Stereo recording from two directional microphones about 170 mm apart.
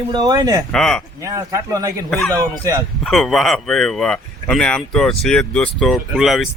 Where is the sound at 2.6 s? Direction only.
20° right (ahead or behind).